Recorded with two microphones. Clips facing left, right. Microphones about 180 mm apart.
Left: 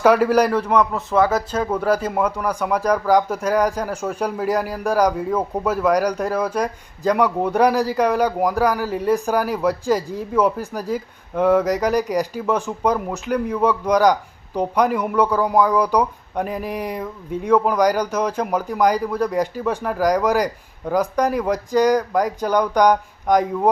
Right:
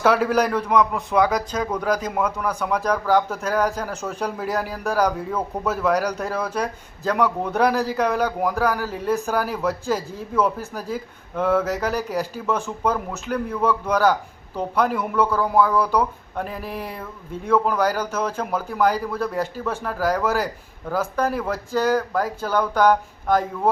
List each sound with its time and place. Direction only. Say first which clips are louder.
0.0 s a man's voice: left 4 dB; 10° left (ahead or behind)